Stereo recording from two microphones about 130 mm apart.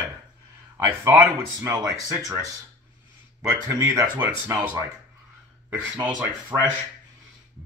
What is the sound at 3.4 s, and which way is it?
Speech, 25° right (ahead or behind).